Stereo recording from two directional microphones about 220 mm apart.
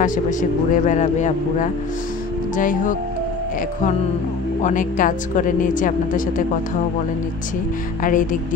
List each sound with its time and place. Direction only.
0.0 s a woman's voice: 35° left (ahead or behind)
4.6 s a woman's voice: 35° left (ahead or behind)
8.0 s a woman's voice: 35° left (ahead or behind)